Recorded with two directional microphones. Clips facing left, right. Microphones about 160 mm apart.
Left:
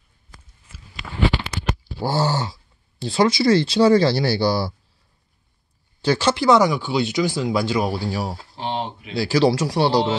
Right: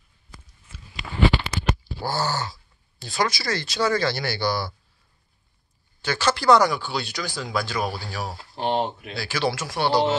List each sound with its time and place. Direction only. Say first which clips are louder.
2.0 s speech: left 8 dB; 25° left (ahead or behind)
6.0 s speech: left 2 dB; 30° left (ahead or behind)
8.5 s speech: right 4 dB; 50° right (ahead or behind)
9.1 s speech: left 11 dB; 35° left (ahead or behind)